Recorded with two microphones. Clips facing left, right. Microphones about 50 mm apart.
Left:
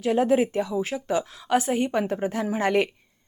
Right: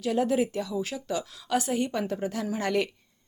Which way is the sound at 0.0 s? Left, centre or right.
Left.